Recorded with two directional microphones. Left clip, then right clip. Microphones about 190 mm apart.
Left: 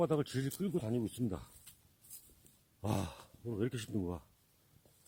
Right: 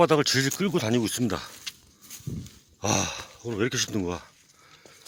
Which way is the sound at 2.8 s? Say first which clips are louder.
Right 14 dB; 15° left (ahead or behind).